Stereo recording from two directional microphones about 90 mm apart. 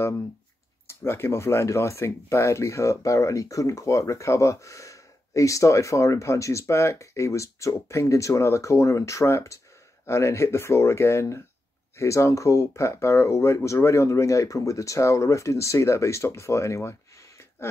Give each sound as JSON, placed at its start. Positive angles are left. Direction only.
{"t": 0.8, "sound": "speech", "side_deg": 25}